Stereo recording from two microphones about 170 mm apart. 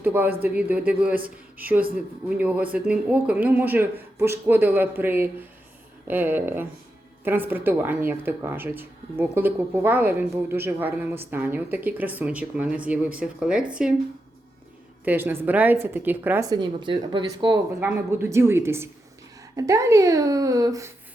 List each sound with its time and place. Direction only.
0.0 s speech: 10° right (ahead or behind)
15.0 s speech: 10° right (ahead or behind)
16.5 s speech: 25° right (ahead or behind)
17.7 s speech: 10° right (ahead or behind)